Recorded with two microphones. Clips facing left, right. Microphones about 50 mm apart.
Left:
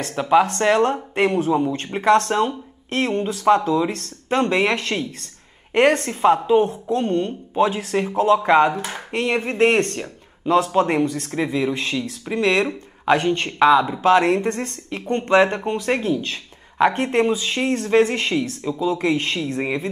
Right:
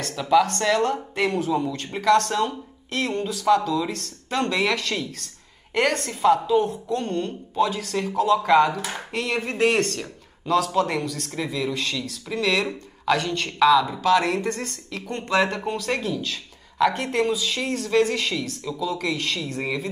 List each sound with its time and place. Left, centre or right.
0.0 s speech: left